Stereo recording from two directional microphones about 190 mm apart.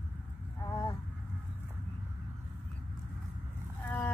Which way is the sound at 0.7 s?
20° left (ahead or behind).